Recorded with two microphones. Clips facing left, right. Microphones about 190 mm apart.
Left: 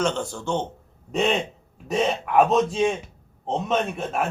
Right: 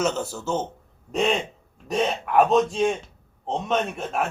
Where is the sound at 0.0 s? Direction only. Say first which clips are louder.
Even; 5° right (ahead or behind).